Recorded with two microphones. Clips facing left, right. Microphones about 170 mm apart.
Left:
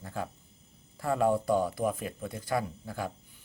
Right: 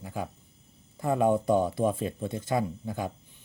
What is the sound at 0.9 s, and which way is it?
Speech, 20° right (ahead or behind).